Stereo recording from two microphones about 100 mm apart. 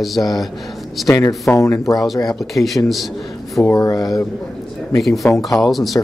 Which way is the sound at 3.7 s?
40° left (ahead or behind).